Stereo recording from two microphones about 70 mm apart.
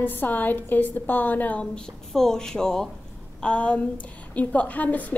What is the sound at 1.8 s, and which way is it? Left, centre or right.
A woman's voice, centre.